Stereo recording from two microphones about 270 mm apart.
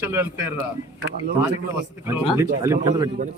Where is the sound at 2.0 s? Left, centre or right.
Centre.